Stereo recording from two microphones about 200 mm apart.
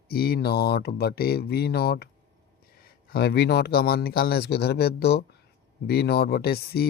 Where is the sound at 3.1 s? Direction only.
55° left (ahead or behind).